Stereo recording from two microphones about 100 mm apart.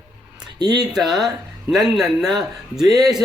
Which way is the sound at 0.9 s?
Centre (ahead or behind).